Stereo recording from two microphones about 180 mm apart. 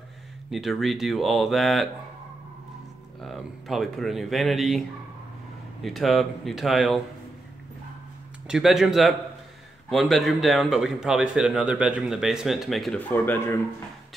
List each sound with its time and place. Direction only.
0.5 s speech: centre (ahead or behind)
3.2 s speech: centre (ahead or behind)
8.5 s speech: 5° right (ahead or behind)
13.1 s speech: 10° left (ahead or behind)